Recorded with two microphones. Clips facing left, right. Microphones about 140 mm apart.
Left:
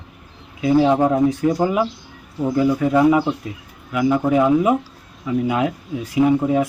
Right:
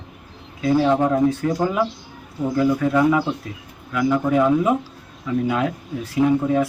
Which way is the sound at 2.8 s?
15° left (ahead or behind).